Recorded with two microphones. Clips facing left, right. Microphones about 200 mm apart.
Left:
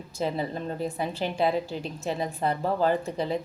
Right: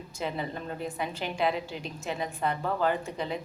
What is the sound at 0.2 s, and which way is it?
A woman's voice, 35° left (ahead or behind).